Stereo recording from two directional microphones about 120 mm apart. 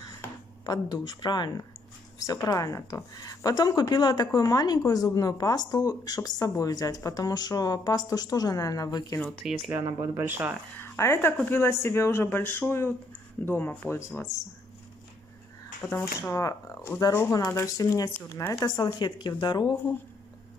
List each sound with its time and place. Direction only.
0.7 s a woman's voice: 30° left (ahead or behind)
9.4 s speech: 5° right (ahead or behind)
9.8 s speech: 20° right (ahead or behind)
10.8 s speech: 20° left (ahead or behind)
15.8 s speech: 15° left (ahead or behind)
16.2 s speech: 25° left (ahead or behind)
18.9 s a woman's voice: 40° left (ahead or behind)